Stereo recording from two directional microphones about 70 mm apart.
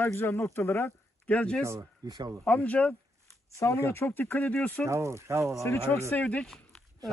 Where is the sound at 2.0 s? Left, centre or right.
Right.